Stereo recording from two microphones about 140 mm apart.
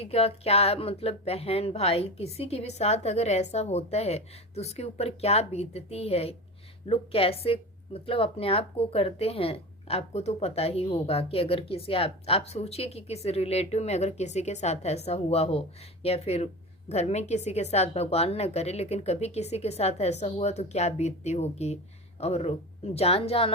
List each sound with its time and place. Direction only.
0.0 s speech: 45° left (ahead or behind)